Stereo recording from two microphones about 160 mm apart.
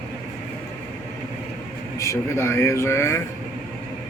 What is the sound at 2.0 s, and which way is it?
Speech, 20° left (ahead or behind).